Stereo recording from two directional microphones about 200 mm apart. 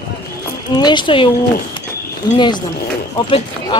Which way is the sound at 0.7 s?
20° left (ahead or behind).